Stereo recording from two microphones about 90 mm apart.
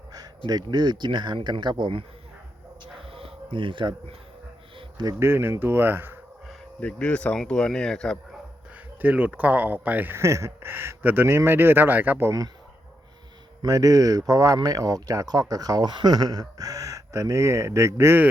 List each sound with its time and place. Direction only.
0.1 s speech: 50° right (ahead or behind); by 2.0 s 70° right (ahead or behind)
3.1 s a sound: 90° right; by 3.9 s 65° right (ahead or behind)
5.2 s speech: 25° right (ahead or behind)
6.7 s speech: 15° left (ahead or behind)
9.0 s speech: 20° right (ahead or behind)
10.2 s speech: 30° right (ahead or behind)
13.6 s speech: 40° right (ahead or behind)